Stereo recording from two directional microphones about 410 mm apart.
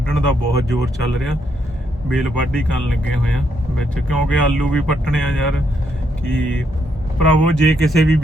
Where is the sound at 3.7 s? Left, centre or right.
Centre.